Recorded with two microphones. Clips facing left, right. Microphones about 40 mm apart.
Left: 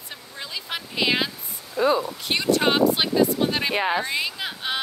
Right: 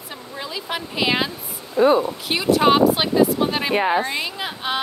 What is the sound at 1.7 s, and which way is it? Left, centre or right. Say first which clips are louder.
Speech: right 5 dB; right.